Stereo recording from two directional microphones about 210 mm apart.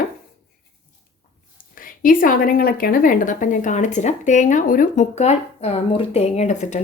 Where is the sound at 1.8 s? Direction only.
40° left (ahead or behind).